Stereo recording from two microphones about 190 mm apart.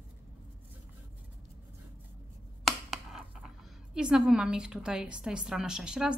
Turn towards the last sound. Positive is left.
turn(degrees=-5)  # may be behind; listen again after turning